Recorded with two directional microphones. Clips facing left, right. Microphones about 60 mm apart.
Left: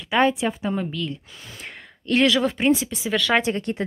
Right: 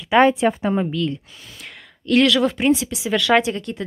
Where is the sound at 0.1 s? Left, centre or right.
Right.